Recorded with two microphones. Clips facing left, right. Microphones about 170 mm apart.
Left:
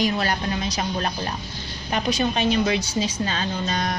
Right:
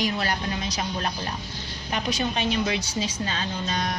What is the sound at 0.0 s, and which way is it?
A woman's voice, 50° left (ahead or behind).